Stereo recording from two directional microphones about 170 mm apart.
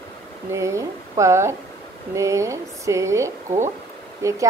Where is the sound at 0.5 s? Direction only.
15° right (ahead or behind).